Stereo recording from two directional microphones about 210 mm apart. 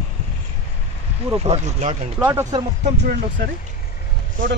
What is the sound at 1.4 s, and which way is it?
Speech, 30° right (ahead or behind).